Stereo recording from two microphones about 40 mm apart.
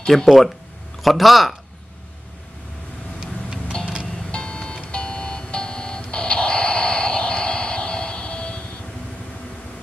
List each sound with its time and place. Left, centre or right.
0.0 s speech: centre
1.0 s speech: centre
3.2 s vehicle: centre
4.3 s music: left